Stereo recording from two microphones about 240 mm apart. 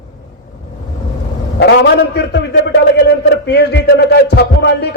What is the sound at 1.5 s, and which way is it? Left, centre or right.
A man's voice, left.